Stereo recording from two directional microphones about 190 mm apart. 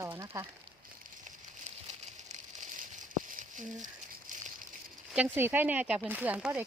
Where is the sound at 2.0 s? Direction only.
40° right (ahead or behind).